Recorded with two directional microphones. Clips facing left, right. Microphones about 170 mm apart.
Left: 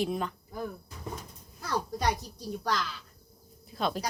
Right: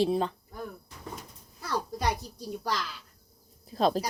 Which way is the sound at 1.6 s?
5° right (ahead or behind).